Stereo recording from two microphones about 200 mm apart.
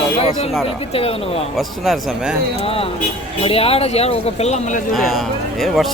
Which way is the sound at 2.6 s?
30° left (ahead or behind).